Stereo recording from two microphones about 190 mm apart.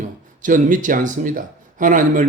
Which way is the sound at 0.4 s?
45° right (ahead or behind).